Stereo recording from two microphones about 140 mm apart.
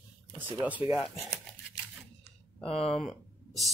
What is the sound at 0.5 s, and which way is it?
Speech, 10° right (ahead or behind).